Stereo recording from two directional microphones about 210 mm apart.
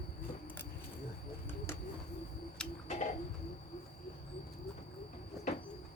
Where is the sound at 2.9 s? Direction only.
35° left (ahead or behind).